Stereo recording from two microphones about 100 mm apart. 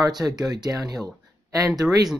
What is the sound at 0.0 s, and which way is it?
Speech, 40° right (ahead or behind).